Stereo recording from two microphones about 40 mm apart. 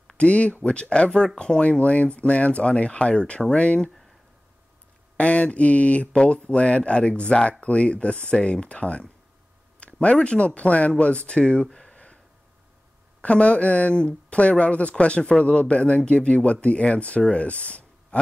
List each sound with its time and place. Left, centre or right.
0.2 s speech: left
5.1 s speech: left
11.7 s a sound: left
13.2 s speech: left